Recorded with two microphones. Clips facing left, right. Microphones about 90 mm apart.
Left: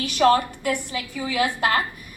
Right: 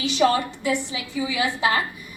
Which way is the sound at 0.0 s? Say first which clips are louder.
Left 2 dB; 55° left (ahead or behind).